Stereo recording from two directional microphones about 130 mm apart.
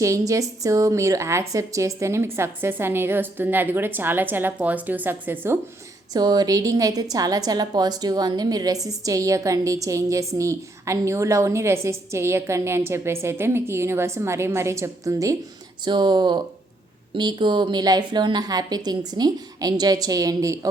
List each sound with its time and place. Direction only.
0.0 s a woman's voice: 25° right (ahead or behind)
6.1 s a woman's voice: 30° right (ahead or behind)